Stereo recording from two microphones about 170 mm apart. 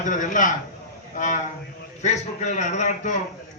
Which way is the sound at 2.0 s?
45° left (ahead or behind).